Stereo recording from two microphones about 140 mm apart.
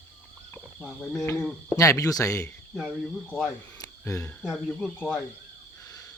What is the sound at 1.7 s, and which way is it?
Speech, 20° left (ahead or behind).